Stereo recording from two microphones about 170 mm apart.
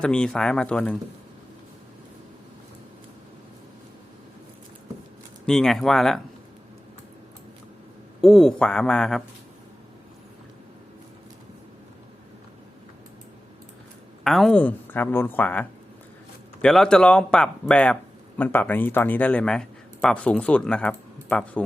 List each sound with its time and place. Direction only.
0.0 s speech: 5° left (ahead or behind)
5.5 s speech: 5° left (ahead or behind)
8.2 s speech: centre (ahead or behind)
14.3 s a man's voice: centre (ahead or behind)